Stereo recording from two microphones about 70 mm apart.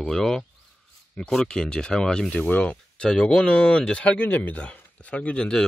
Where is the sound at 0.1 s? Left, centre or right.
Centre.